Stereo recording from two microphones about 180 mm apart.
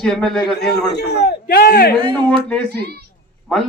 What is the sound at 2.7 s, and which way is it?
Speech, 65° right (ahead or behind).